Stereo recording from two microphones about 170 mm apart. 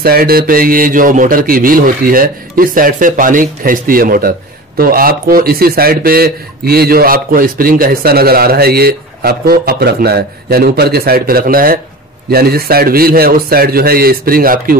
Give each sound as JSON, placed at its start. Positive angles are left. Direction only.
{"t": 0.0, "sound": "a man's voice", "side_deg": -60}